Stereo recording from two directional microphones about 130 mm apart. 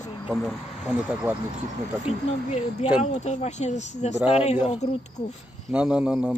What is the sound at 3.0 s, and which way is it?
Speech, 60° left (ahead or behind).